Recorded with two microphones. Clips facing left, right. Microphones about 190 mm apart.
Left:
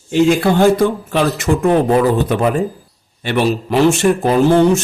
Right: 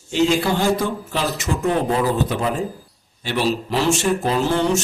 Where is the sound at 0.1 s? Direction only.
55° left (ahead or behind).